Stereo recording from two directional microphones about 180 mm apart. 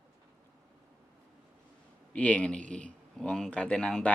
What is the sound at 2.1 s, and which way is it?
Speech, 10° left (ahead or behind).